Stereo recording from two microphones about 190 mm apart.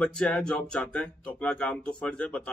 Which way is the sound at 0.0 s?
5° left (ahead or behind).